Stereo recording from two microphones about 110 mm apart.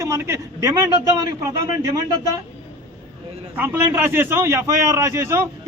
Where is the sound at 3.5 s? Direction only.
20° right (ahead or behind).